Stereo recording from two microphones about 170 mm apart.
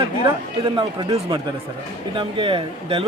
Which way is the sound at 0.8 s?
25° right (ahead or behind).